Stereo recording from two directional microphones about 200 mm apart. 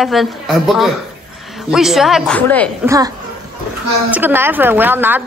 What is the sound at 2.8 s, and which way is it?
A woman's voice, 15° right (ahead or behind).